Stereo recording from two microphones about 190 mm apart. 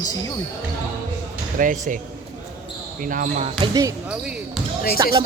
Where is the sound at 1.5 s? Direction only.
40° right (ahead or behind).